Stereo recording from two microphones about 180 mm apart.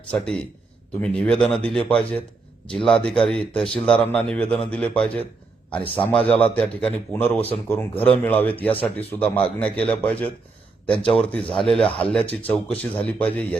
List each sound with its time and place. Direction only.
0.1 s a man's voice: 5° left (ahead or behind)